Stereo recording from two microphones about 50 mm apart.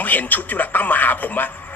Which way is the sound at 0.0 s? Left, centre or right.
Left.